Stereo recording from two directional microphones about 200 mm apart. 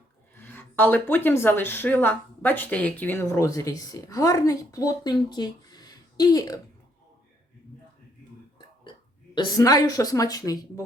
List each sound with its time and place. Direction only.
0.3 s speech: 10° left (ahead or behind)
8.5 s speech: 25° left (ahead or behind)